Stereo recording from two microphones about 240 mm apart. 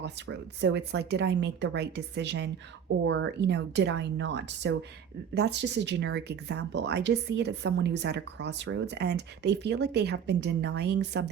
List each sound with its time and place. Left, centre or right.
0.0 s speech: right